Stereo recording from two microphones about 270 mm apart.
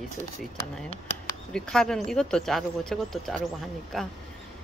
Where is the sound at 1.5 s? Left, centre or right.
Centre.